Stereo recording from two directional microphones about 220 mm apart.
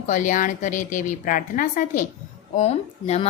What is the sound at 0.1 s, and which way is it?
A woman's voice, 35° left (ahead or behind).